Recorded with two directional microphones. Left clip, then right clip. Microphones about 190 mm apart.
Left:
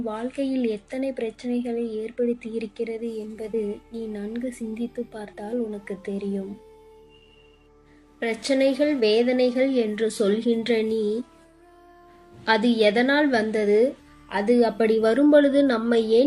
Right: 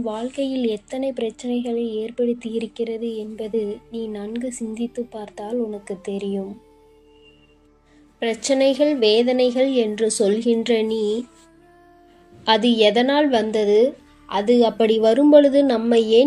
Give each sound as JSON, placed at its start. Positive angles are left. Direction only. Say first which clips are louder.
{"t": 0.0, "sound": "speech", "louder": "right 3 dB", "side_deg": -20}
{"t": 8.2, "sound": "speech", "louder": "right 4 dB", "side_deg": -20}
{"t": 12.5, "sound": "speech", "louder": "right 4 dB", "side_deg": -20}